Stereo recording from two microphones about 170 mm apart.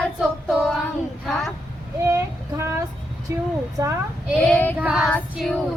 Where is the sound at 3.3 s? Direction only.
20° right (ahead or behind).